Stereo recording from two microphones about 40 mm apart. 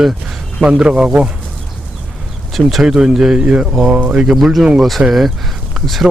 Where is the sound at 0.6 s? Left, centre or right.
Right.